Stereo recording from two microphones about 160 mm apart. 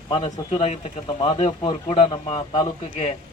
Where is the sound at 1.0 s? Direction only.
35° left (ahead or behind).